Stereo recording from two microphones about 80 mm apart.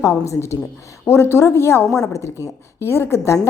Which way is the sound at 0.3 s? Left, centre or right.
Left.